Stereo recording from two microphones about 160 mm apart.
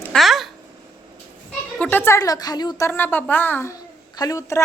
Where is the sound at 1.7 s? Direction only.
10° left (ahead or behind); by 2.9 s 25° left (ahead or behind).